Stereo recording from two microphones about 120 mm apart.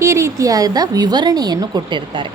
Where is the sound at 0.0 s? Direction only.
25° right (ahead or behind).